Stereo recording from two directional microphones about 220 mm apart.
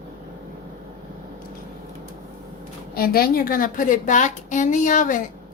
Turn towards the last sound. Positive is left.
turn(degrees=35)  # may be behind; listen again after turning